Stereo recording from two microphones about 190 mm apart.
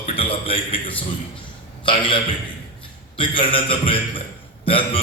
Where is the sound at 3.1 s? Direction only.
25° left (ahead or behind).